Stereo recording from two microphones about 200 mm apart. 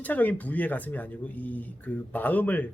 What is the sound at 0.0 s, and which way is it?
Speech, 10° left (ahead or behind).